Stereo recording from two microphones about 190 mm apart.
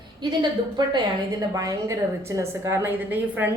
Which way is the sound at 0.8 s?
20° right (ahead or behind).